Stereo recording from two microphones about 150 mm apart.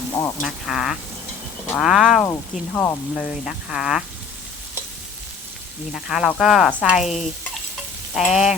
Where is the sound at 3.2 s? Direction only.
5° right (ahead or behind).